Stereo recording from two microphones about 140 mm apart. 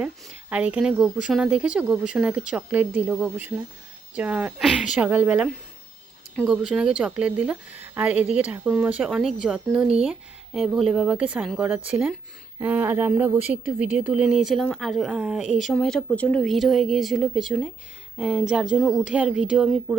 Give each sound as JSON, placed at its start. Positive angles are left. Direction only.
{"t": 0.0, "sound": "speech", "side_deg": -10}